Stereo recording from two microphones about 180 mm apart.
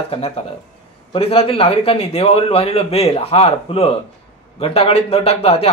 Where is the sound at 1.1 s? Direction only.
30° left (ahead or behind).